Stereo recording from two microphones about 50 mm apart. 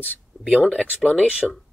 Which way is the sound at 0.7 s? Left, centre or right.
Centre.